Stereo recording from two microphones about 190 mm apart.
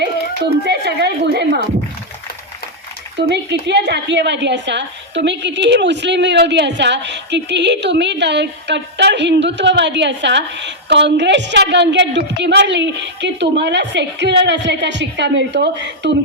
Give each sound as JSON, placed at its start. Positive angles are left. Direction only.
{"t": 0.6, "sound": "a woman's voice", "side_deg": -65}
{"t": 3.2, "sound": "a woman's voice", "side_deg": -65}